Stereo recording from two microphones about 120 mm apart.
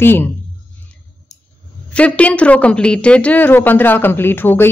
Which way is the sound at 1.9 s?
10° left (ahead or behind).